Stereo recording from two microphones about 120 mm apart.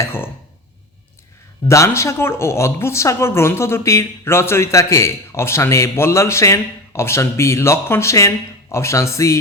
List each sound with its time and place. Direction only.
0.0 s speech: 20° left (ahead or behind)
1.6 s speech: 25° left (ahead or behind)